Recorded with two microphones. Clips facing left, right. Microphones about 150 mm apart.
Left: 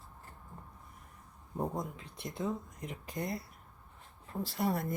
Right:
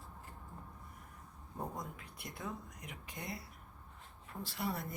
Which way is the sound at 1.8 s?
25° left (ahead or behind).